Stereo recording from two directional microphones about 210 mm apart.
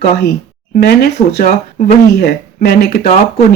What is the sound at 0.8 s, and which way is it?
Speech, 50° left (ahead or behind).